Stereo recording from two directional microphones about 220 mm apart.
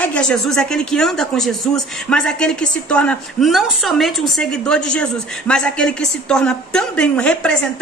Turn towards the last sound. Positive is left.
turn(degrees=5)  # may be behind; listen again after turning